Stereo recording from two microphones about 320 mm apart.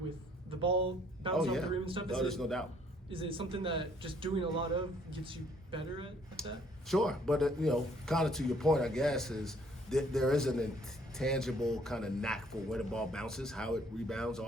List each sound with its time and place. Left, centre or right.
0.6 s speech: centre
1.3 s speech: centre
1.8 s speech: centre
2.0 s speech: centre
3.1 s speech: centre
6.4 s speech: centre